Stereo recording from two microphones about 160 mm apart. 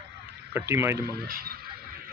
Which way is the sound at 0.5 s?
15° right (ahead or behind).